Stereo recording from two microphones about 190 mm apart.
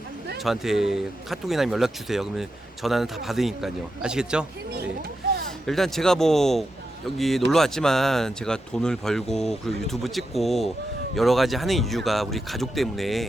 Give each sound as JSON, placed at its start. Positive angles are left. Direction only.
{"t": 0.4, "sound": "speech", "side_deg": 0}
{"t": 5.5, "sound": "speech", "side_deg": 0}